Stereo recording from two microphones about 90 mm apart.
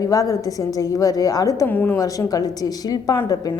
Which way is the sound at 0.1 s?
40° left (ahead or behind).